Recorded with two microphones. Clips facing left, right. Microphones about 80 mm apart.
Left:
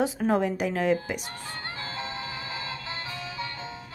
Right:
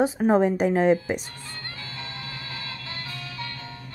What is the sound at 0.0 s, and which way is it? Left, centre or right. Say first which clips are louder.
A woman's voice: right 5 dB; right.